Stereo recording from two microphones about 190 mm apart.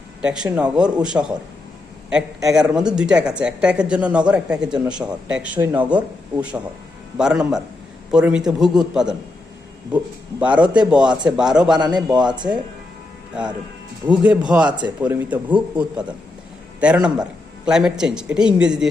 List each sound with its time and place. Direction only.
0.2 s speech: 5° right (ahead or behind)
2.5 s speech: 5° right (ahead or behind)
10.4 s speech: 5° right (ahead or behind)
12.2 s speech: 25° right (ahead or behind)
13.3 s speech: 5° right (ahead or behind)
14.7 s speech: 25° right (ahead or behind)
15.0 s speech: 10° right (ahead or behind)